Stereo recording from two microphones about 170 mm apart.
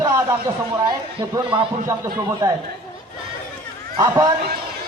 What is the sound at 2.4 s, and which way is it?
Speech, 20° right (ahead or behind).